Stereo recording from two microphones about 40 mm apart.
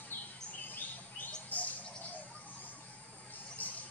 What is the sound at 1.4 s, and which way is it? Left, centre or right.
Bird, left.